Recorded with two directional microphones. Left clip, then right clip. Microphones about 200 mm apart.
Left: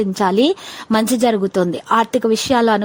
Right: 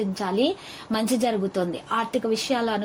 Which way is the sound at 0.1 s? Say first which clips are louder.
Left 10 dB; 45° left (ahead or behind).